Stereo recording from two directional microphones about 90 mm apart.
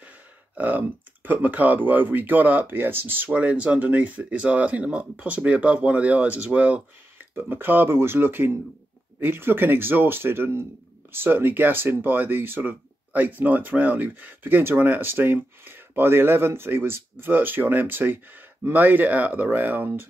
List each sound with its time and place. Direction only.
0.6 s speech: 20° right (ahead or behind)